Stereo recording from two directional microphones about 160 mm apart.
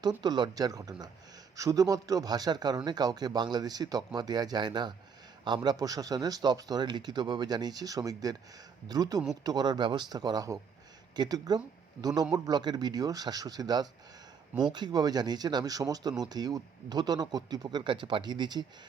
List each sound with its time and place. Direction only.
0.0 s speech: 25° right (ahead or behind)